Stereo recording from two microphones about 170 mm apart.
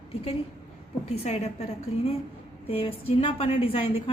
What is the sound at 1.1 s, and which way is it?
Speech, 40° left (ahead or behind).